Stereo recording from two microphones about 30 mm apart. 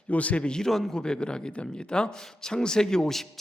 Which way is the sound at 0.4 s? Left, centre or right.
Left.